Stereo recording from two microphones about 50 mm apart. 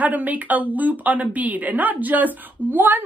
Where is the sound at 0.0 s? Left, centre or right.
Right.